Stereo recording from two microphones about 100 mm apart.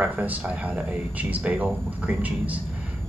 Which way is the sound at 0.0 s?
15° right (ahead or behind).